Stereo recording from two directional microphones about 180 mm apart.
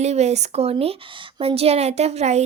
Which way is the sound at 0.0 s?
40° right (ahead or behind).